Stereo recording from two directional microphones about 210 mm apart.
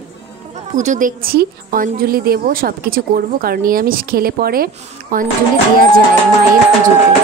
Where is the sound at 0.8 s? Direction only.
35° right (ahead or behind).